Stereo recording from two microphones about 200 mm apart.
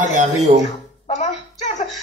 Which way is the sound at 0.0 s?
35° right (ahead or behind).